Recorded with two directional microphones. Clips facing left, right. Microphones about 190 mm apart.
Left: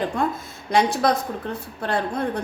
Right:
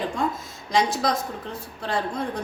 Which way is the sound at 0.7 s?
60° left (ahead or behind).